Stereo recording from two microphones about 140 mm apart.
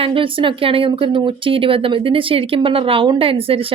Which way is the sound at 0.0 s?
40° right (ahead or behind).